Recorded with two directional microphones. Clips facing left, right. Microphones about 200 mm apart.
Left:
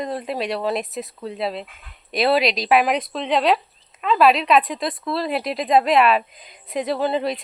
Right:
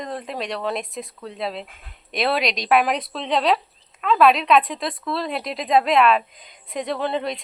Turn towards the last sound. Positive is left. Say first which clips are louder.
# left 3 dB
turn(degrees=5)  # may be behind; listen again after turning